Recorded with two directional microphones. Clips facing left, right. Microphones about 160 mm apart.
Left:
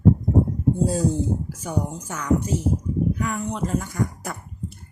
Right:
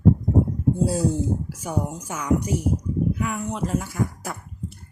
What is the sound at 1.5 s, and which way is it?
Speech, 10° right (ahead or behind).